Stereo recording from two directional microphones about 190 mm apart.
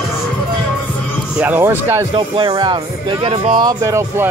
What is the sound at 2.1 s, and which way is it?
Speech, 25° right (ahead or behind).